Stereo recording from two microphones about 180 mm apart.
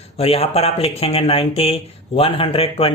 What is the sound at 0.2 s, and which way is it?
Speech, 35° left (ahead or behind).